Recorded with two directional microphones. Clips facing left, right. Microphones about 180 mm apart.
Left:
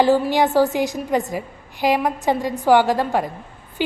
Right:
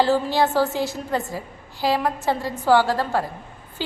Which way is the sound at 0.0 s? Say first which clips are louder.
Left 3 dB; 15° left (ahead or behind).